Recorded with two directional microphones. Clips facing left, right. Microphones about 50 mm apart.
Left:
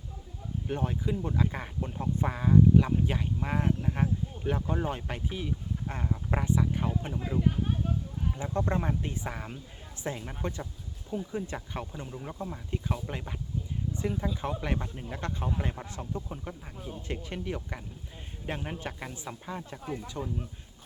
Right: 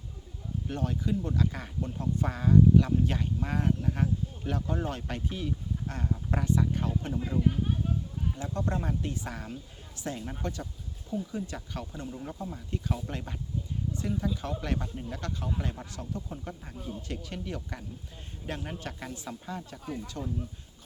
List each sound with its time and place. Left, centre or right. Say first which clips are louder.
0.7 s speech: even; centre
8.4 s speech: left 3 dB; left
13.9 s speech: even; left
17.1 s speech: left 5 dB; left